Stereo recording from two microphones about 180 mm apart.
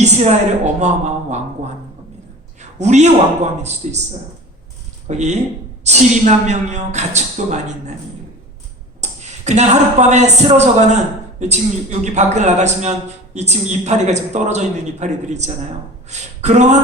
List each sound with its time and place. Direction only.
0.0 s speech: 40° right (ahead or behind)
2.6 s speech: 40° right (ahead or behind)
5.0 s speech: 40° right (ahead or behind)
9.0 s speech: 40° right (ahead or behind)